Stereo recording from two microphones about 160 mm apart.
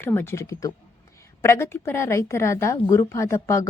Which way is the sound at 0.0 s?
15° left (ahead or behind).